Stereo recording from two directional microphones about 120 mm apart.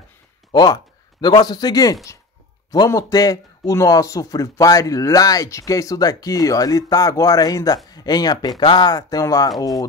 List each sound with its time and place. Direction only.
0.5 s speech: 35° left (ahead or behind)